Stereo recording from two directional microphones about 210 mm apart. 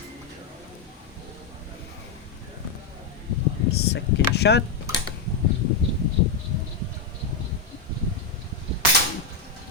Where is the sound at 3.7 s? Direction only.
50° left (ahead or behind).